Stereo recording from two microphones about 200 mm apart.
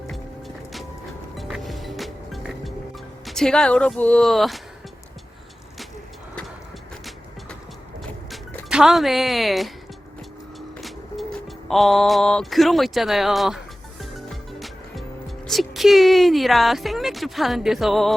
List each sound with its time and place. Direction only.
0.1 s music: centre (ahead or behind)
3.2 s a woman's voice: centre (ahead or behind)
8.3 s speech: centre (ahead or behind)
10.8 s music: centre (ahead or behind)
15.4 s a woman's voice: centre (ahead or behind)